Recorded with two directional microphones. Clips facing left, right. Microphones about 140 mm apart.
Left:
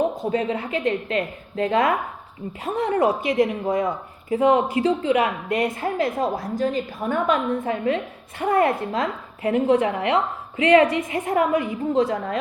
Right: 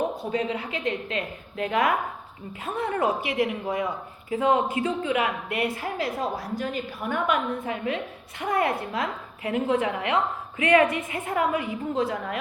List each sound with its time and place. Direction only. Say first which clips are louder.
0.2 s a woman's voice: left 4 dB; 45° left (ahead or behind)
4.4 s a woman's voice: left 5 dB; 25° left (ahead or behind)